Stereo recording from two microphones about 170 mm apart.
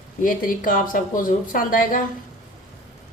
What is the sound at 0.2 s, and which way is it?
A woman's voice, 55° left (ahead or behind).